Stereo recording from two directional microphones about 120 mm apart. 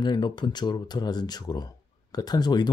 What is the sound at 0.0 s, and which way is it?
Speech, 40° left (ahead or behind).